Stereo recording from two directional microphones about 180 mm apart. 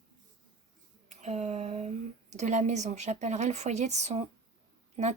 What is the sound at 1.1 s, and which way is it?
Speech, 40° right (ahead or behind).